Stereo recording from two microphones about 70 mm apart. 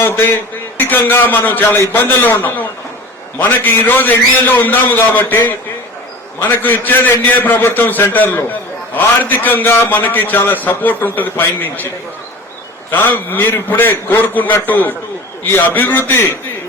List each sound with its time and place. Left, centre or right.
0.0 s a man's voice: left
3.3 s a man's voice: left
12.9 s a man's voice: left
16.0 s a man's voice: left